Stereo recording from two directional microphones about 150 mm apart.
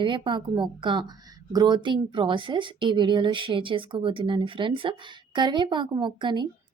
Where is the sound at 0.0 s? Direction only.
30° right (ahead or behind).